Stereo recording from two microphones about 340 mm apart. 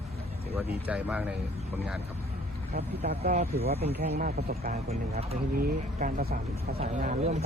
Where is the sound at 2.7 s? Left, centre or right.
Right.